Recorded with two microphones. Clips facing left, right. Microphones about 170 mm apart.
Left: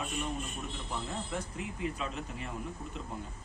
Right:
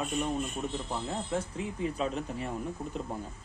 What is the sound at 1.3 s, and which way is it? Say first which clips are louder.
A man's voice: right 5 dB; 35° right (ahead or behind).